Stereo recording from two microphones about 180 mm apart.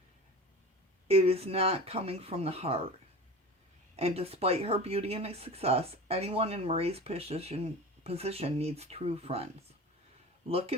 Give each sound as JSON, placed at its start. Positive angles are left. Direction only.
{"t": 1.0, "sound": "speech", "side_deg": -35}
{"t": 3.9, "sound": "speech", "side_deg": -35}